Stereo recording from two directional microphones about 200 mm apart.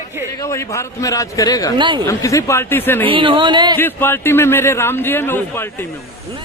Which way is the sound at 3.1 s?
25° right (ahead or behind).